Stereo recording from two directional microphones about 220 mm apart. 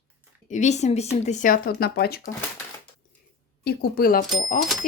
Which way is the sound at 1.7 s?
45° left (ahead or behind).